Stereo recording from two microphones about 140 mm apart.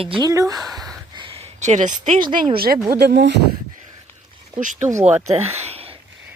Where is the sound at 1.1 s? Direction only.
40° right (ahead or behind).